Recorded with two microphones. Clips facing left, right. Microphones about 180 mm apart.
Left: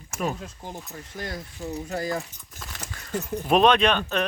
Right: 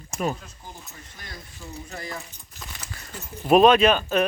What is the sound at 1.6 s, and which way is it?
Speech, 40° left (ahead or behind).